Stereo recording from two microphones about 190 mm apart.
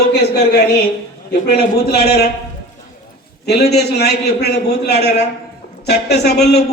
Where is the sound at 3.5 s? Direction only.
60° left (ahead or behind).